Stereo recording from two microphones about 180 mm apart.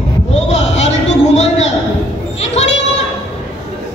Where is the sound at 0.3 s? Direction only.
35° left (ahead or behind).